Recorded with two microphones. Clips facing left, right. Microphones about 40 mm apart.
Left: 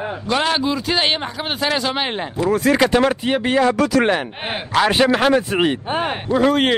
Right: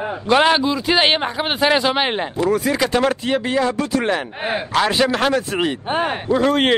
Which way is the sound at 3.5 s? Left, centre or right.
Left.